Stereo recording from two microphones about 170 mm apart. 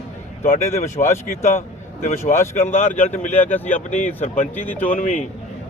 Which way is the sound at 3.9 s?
45° left (ahead or behind).